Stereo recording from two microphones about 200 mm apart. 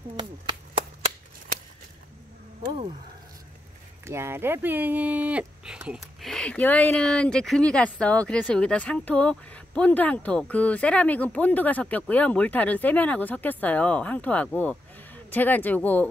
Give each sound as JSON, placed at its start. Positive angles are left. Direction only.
{"t": 0.2, "sound": "chop", "side_deg": -25}
{"t": 4.0, "sound": "speech", "side_deg": -10}